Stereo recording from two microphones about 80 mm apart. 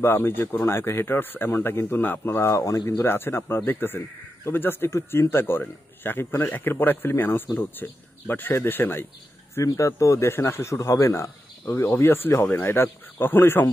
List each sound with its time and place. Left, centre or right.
0.0 s speech: left
2.5 s speech: left
9.6 s a man's voice: left